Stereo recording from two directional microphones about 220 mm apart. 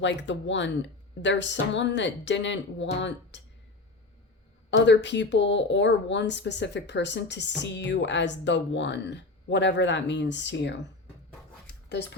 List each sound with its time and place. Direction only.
0.0 s speech: 55° left (ahead or behind)
4.7 s speech: 55° left (ahead or behind)
11.6 s a sound: 50° left (ahead or behind)